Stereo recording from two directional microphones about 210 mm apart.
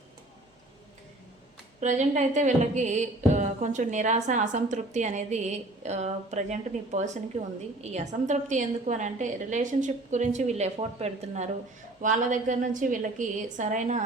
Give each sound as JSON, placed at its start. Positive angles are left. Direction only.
{"t": 1.8, "sound": "a woman's voice", "side_deg": -35}